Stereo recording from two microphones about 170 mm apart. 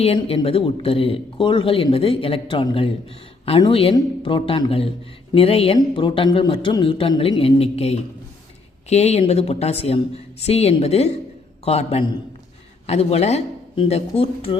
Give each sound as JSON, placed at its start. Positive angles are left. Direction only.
{"t": 0.0, "sound": "a man's voice", "side_deg": 35}